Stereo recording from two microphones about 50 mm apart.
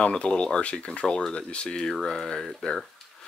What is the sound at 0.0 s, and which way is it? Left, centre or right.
Speech, centre.